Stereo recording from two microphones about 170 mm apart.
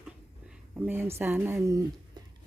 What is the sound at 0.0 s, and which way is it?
Speech, 5° right (ahead or behind).